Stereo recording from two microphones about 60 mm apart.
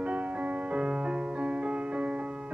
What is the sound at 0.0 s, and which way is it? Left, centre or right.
Music, right.